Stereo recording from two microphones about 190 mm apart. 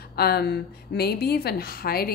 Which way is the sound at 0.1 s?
55° left (ahead or behind).